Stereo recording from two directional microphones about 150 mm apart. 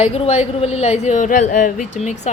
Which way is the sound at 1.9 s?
50° left (ahead or behind).